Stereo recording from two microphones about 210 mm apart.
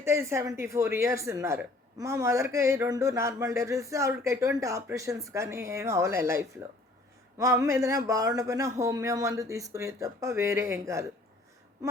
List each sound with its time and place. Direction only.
0.0 s speech: 10° right (ahead or behind)